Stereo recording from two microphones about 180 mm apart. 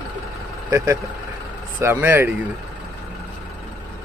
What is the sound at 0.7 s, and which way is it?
Speech, 15° right (ahead or behind).